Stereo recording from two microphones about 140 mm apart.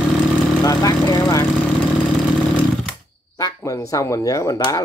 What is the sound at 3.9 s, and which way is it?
Speech, 25° left (ahead or behind).